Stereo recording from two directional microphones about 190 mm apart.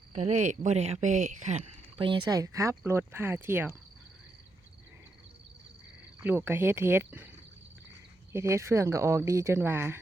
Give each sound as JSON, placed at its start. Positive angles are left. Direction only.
{"t": 0.1, "sound": "speech", "side_deg": -40}
{"t": 2.0, "sound": "speech", "side_deg": -25}
{"t": 6.2, "sound": "speech", "side_deg": -10}
{"t": 8.3, "sound": "speech", "side_deg": -15}